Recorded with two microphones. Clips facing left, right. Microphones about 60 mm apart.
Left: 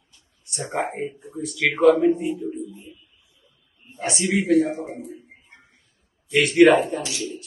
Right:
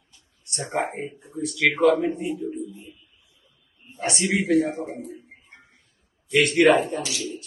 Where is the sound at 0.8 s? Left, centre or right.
Centre.